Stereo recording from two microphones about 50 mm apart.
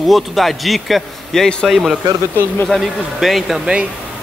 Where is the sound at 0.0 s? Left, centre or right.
Centre.